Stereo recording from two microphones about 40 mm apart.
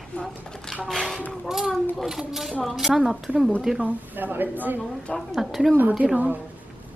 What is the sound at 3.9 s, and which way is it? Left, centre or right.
Speech, right.